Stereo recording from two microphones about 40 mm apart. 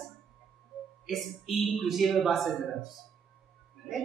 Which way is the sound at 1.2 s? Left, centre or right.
Centre.